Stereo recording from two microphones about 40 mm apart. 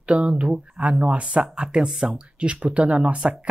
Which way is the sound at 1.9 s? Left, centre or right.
Centre.